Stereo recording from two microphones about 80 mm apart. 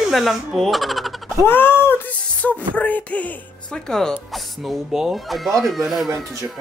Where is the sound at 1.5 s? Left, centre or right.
Left; by 4.1 s centre.